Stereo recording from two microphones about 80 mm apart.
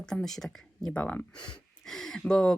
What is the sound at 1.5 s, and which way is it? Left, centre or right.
Speech, centre.